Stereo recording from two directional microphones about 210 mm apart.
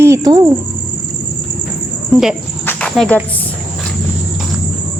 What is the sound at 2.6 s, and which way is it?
Cricket, 5° left (ahead or behind).